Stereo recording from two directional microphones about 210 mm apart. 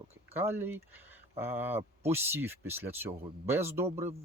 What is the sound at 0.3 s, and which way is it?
Speech, 10° right (ahead or behind).